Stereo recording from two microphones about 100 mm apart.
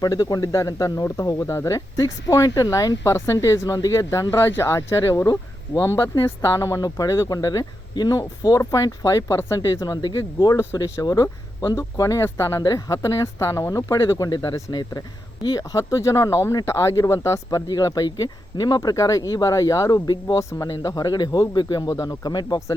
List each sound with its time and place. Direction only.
0.0 s speech: 40° left (ahead or behind)
9.8 s speech: 45° left (ahead or behind)